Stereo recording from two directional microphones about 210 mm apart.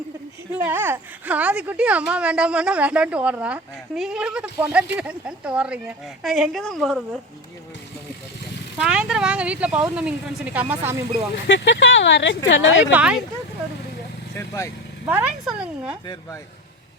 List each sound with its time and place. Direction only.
0.6 s a woman's voice: 10° right (ahead or behind)
8.8 s a woman's voice: 5° right (ahead or behind)
11.4 s speech: 60° left (ahead or behind)
12.8 s a woman's voice: 5° right (ahead or behind)
14.3 s speech: 15° left (ahead or behind)
15.0 s a woman's voice: 5° right (ahead or behind)